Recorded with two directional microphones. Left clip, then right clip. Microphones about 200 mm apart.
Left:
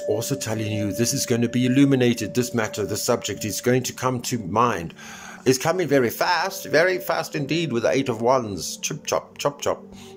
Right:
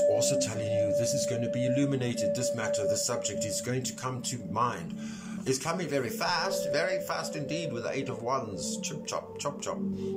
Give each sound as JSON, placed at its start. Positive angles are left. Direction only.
{"t": 0.1, "sound": "speech", "side_deg": 40}